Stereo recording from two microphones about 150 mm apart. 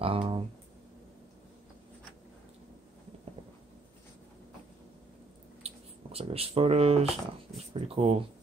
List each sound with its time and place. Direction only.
0.0 s speech: 35° right (ahead or behind)
5.6 s a sound: 40° right (ahead or behind)
6.1 s speech: 40° right (ahead or behind)